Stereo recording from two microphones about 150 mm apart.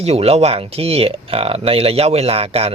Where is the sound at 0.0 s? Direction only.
40° right (ahead or behind).